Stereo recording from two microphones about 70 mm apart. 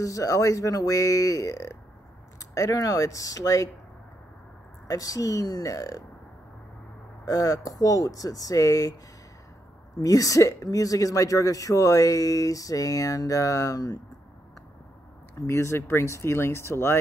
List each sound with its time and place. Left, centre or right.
0.0 s speech: left
4.8 s a woman's voice: left
7.2 s a woman's voice: left
9.9 s a woman's voice: left
15.3 s speech: left